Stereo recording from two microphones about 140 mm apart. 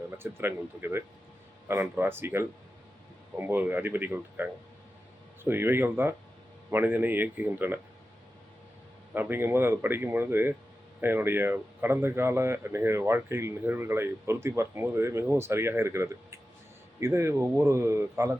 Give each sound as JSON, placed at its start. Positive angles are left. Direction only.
{"t": 0.2, "sound": "speech", "side_deg": -15}
{"t": 9.1, "sound": "speech", "side_deg": -15}